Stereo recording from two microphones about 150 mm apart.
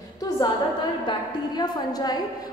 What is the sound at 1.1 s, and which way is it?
A woman's voice, 30° left (ahead or behind).